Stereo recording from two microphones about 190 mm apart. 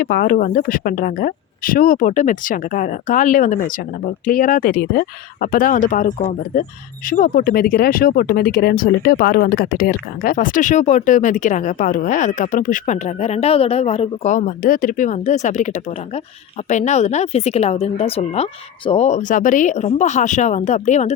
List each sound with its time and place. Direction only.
0.0 s speech: 50° left (ahead or behind)